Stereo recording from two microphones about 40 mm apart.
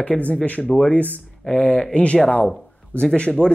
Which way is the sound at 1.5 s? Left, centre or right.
Left.